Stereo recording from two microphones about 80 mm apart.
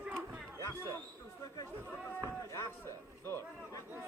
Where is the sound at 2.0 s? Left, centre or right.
Left.